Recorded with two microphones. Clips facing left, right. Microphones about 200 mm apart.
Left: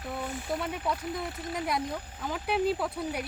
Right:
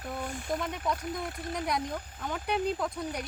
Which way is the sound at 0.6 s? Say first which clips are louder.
Left 1 dB; 5° left (ahead or behind).